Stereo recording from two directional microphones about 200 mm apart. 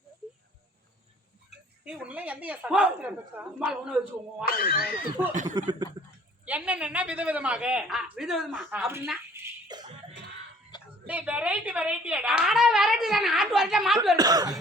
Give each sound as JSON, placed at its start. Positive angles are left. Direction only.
{"t": 1.8, "sound": "speech", "side_deg": -5}
{"t": 4.4, "sound": "speech", "side_deg": 45}
{"t": 5.3, "sound": "speech", "side_deg": -40}
{"t": 5.5, "sound": "speech", "side_deg": -20}
{"t": 6.4, "sound": "a woman's voice", "side_deg": -5}
{"t": 8.7, "sound": "speech", "side_deg": -10}
{"t": 9.3, "sound": "a sound", "side_deg": -20}
{"t": 11.0, "sound": "a woman's voice", "side_deg": -5}
{"t": 14.2, "sound": "speech", "side_deg": -20}